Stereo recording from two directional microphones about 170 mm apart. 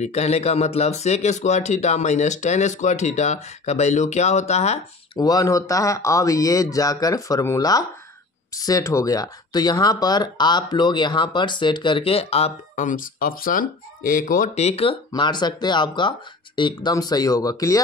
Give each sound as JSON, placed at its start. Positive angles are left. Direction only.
{"t": 0.0, "sound": "speech", "side_deg": 40}
{"t": 5.2, "sound": "speech", "side_deg": 20}